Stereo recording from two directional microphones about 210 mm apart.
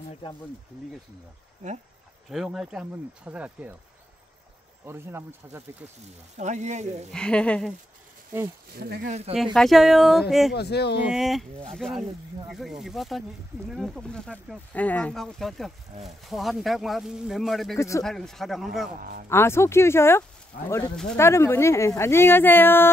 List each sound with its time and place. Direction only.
2.3 s speech: centre (ahead or behind)
4.8 s speech: 10° right (ahead or behind)
6.3 s speech: 35° right (ahead or behind)
7.1 s speech: 5° left (ahead or behind)
8.7 s speech: 50° right (ahead or behind)
9.3 s speech: centre (ahead or behind)
10.5 s speech: 50° left (ahead or behind)
11.1 s speech: centre (ahead or behind)
17.7 s speech: 15° left (ahead or behind)
18.0 s speech: centre (ahead or behind)
18.9 s speech: 45° right (ahead or behind)
19.2 s speech: 10° left (ahead or behind)